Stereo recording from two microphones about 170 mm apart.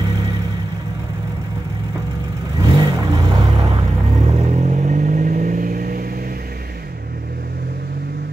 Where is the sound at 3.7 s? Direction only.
40° right (ahead or behind); by 6.4 s 65° right (ahead or behind).